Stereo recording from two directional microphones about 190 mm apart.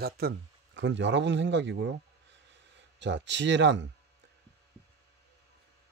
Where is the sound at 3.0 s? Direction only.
70° right (ahead or behind).